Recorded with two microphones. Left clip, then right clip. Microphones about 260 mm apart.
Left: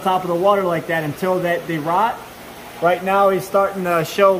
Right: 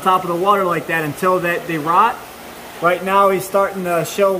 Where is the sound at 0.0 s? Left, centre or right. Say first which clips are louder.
Right 1 dB; centre.